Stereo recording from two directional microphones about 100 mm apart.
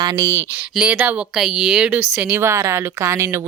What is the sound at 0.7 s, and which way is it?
Speech, 10° right (ahead or behind).